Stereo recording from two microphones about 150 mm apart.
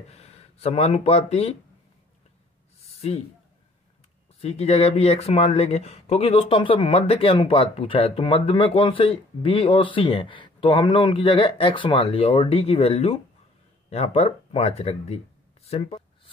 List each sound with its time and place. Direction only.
0.1 s speech: 45° left (ahead or behind)
2.8 s a sound: 45° left (ahead or behind)
4.4 s speech: 45° left (ahead or behind)